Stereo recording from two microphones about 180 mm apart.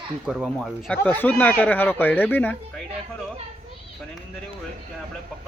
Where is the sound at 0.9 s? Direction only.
10° left (ahead or behind).